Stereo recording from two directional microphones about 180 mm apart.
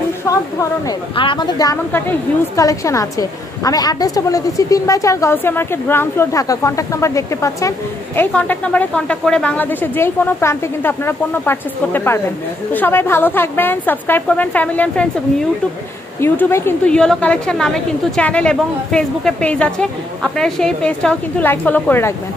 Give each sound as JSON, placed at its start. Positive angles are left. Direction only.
{"t": 0.3, "sound": "a woman's voice", "side_deg": 20}
{"t": 1.9, "sound": "a woman's voice", "side_deg": 10}
{"t": 16.2, "sound": "a woman's voice", "side_deg": 15}